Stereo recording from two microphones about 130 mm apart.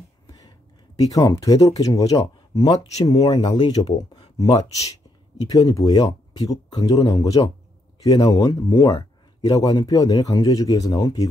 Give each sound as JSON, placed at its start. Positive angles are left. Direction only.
{"t": 0.3, "sound": "a man's voice", "side_deg": 30}